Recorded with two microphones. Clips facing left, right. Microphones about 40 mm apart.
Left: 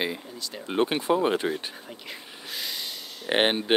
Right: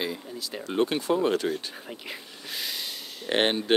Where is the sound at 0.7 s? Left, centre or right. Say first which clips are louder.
Left 1 dB; left.